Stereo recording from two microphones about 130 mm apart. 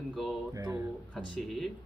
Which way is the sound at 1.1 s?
5° left (ahead or behind).